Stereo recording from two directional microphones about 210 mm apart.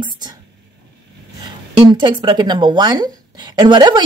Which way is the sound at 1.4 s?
20° right (ahead or behind).